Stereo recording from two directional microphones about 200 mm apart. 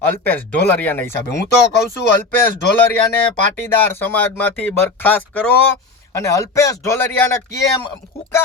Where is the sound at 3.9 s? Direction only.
10° left (ahead or behind).